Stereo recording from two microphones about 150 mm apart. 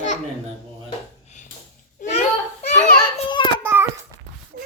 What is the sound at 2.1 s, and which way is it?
Children playing, 45° left (ahead or behind).